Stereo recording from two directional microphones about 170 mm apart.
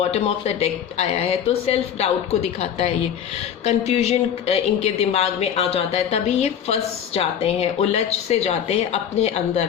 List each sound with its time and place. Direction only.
0.0 s speech: 35° left (ahead or behind)